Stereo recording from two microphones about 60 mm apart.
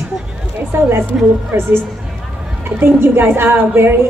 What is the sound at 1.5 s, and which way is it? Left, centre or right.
Speech, right.